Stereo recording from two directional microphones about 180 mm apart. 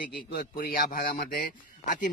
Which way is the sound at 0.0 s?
55° left (ahead or behind).